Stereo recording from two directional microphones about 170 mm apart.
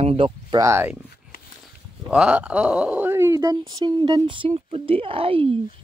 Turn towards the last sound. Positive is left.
turn(degrees=-30)  # may be behind; listen again after turning